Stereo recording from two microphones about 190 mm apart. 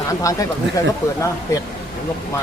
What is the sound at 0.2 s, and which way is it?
Speech, 15° left (ahead or behind).